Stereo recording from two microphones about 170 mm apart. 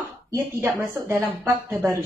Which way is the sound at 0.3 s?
15° right (ahead or behind).